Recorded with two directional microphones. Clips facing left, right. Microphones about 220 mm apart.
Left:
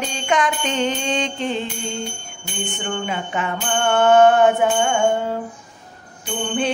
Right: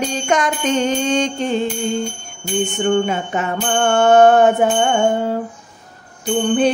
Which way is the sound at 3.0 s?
40° right (ahead or behind).